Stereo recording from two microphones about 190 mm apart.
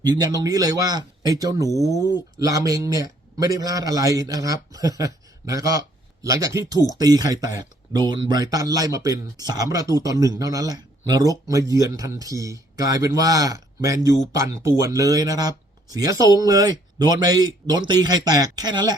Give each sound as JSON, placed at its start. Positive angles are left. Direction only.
{"t": 0.0, "sound": "speech", "side_deg": -20}
{"t": 1.7, "sound": "speech", "side_deg": 15}
{"t": 2.4, "sound": "speech", "side_deg": -15}